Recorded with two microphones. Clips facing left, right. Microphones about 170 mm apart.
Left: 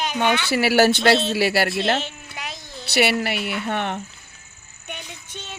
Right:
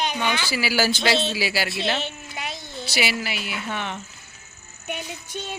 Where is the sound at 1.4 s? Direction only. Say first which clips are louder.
Left 6 dB; 60° left (ahead or behind).